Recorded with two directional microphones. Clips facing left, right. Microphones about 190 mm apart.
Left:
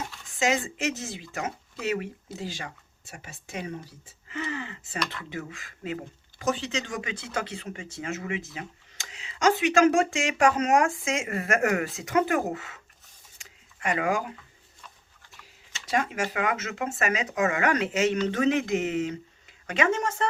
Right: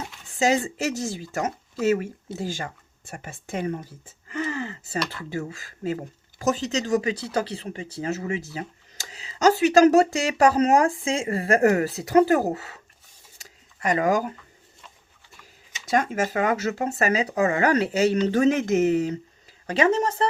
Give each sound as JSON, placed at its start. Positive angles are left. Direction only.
{"t": 0.3, "sound": "speech", "side_deg": -35}
{"t": 13.4, "sound": "a sound", "side_deg": -40}
{"t": 15.9, "sound": "speech", "side_deg": -45}